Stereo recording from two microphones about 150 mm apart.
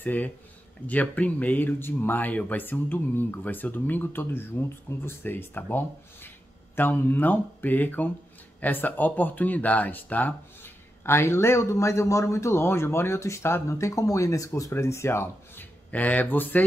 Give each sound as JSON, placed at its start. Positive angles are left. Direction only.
{"t": 0.0, "sound": "speech", "side_deg": 10}